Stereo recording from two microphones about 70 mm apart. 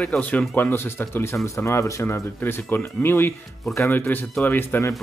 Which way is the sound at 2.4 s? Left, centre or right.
Left.